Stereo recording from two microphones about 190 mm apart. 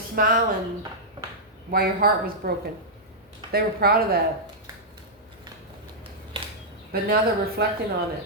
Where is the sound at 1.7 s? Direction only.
55° right (ahead or behind).